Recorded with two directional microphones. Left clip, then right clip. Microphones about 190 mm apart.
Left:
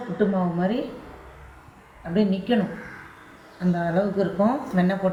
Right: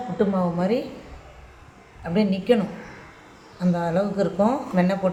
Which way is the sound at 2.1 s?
60° right (ahead or behind).